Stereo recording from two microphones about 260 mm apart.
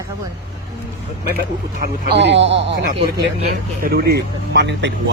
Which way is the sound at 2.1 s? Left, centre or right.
Right.